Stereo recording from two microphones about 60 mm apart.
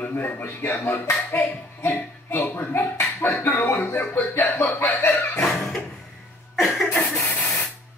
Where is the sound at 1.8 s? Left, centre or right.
Left.